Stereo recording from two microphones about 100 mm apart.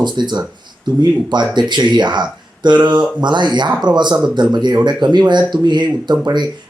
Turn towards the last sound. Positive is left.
turn(degrees=-50)  # may be behind; listen again after turning